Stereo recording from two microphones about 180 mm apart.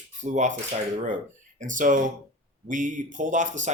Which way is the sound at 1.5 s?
45° right (ahead or behind).